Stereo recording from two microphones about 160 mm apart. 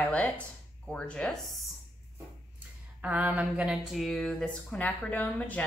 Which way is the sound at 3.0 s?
10° right (ahead or behind).